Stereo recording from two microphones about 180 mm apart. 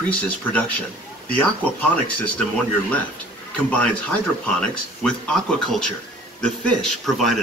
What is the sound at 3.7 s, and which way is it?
Speech, 5° left (ahead or behind).